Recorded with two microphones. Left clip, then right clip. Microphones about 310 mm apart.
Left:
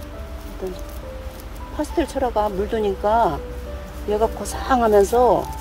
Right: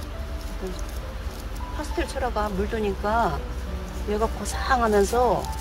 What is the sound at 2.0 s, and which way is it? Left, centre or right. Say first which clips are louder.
Speech: left 6 dB; left.